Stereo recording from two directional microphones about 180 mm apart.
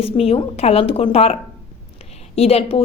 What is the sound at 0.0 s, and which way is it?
Speech, 30° left (ahead or behind).